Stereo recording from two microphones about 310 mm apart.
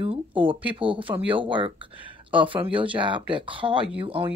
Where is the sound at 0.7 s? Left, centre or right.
Centre.